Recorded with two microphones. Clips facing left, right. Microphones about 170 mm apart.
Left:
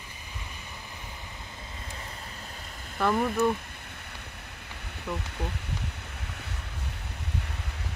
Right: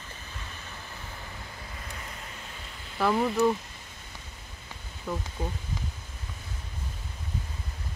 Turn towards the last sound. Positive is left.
turn(degrees=75)  # may be behind; listen again after turning